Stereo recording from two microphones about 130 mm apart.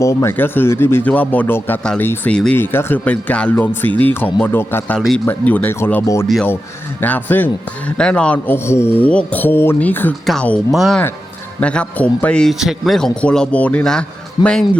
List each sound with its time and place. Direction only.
0.0 s a man's voice: 25° left (ahead or behind)
4.9 s speech: centre (ahead or behind)
5.2 s a man's voice: 15° left (ahead or behind)
11.6 s a man's voice: 10° left (ahead or behind)